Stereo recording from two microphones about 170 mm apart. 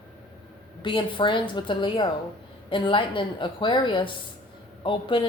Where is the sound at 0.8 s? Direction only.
30° left (ahead or behind).